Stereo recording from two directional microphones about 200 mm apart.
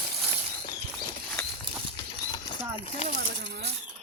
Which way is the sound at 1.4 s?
10° left (ahead or behind).